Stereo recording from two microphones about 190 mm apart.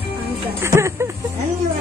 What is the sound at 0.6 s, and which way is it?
Speech, 15° right (ahead or behind).